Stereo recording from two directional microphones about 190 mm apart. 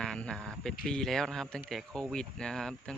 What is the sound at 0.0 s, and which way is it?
A man's voice, 5° left (ahead or behind).